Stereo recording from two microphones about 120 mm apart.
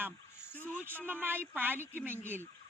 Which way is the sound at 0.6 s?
15° right (ahead or behind).